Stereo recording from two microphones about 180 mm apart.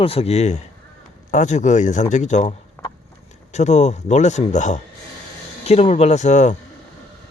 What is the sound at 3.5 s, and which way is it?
A man's voice, 40° left (ahead or behind).